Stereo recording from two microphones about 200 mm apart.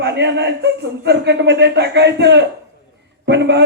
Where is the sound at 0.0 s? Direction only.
60° right (ahead or behind).